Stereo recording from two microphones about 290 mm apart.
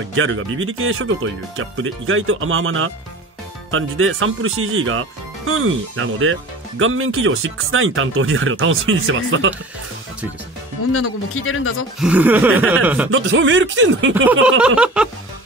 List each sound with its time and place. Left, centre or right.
0.1 s speech: right
10.9 s a man's voice: left
12.0 s chuckle: centre
13.1 s speech: right
14.1 s speech: centre
14.6 s chuckle: centre